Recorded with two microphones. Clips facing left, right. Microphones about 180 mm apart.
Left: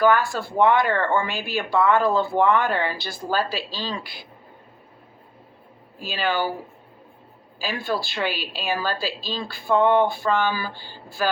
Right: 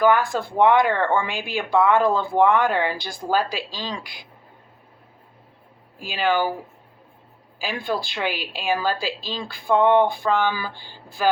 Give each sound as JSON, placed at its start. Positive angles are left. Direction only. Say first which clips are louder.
{"t": 0.0, "sound": "speech", "louder": "right 1 dB", "side_deg": -15}
{"t": 6.0, "sound": "speech", "louder": "right 3 dB", "side_deg": -15}
{"t": 7.6, "sound": "speech", "louder": "even", "side_deg": -15}